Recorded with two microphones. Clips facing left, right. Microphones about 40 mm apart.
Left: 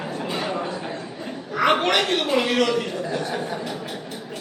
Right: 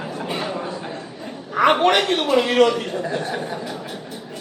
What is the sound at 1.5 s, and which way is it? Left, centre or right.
A woman's voice, right.